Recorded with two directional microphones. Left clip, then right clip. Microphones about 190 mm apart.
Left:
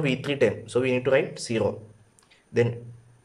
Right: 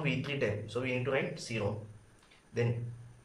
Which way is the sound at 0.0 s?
45° left (ahead or behind).